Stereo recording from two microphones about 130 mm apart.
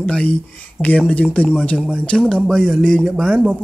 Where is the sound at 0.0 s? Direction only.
10° left (ahead or behind).